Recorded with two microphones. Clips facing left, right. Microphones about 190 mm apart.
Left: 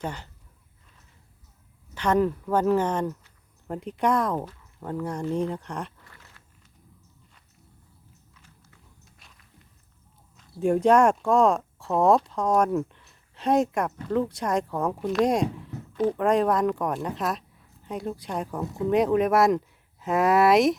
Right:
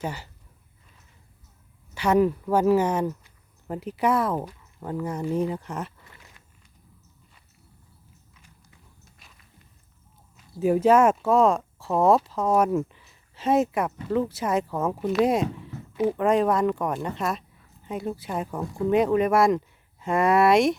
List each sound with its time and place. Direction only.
0.0 s speech: 5° right (ahead or behind)
2.0 s speech: 10° right (ahead or behind)
6.1 s a sound: 15° right (ahead or behind)
9.0 s walk: centre (ahead or behind)
10.5 s speech: 5° right (ahead or behind)